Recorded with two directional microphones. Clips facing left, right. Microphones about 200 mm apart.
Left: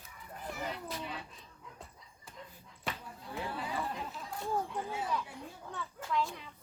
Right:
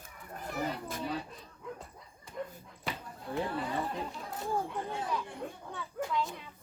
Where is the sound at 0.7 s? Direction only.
45° right (ahead or behind).